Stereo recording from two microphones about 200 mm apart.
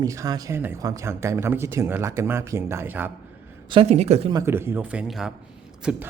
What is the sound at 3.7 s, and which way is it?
Speech, 30° right (ahead or behind).